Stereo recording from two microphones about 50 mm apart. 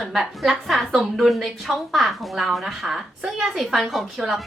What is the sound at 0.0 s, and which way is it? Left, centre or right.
A woman's voice, centre.